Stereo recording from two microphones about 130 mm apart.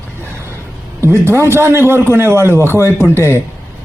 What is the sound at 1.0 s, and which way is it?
A man's voice, 20° right (ahead or behind).